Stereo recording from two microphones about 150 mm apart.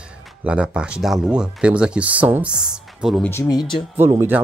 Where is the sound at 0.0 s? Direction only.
5° right (ahead or behind).